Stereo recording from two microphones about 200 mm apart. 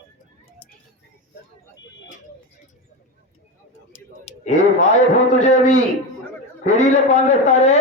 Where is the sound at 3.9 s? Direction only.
35° left (ahead or behind).